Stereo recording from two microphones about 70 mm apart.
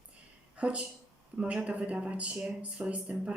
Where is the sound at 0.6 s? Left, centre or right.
Centre.